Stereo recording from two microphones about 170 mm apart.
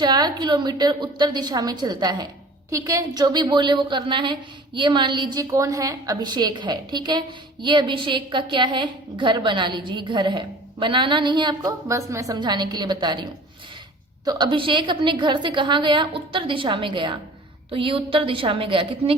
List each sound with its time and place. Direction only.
0.0 s a woman's voice: 25° right (ahead or behind)
14.3 s a woman's voice: 25° right (ahead or behind)